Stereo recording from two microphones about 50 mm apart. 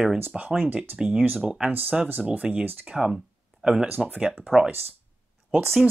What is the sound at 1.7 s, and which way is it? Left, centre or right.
Speech, right.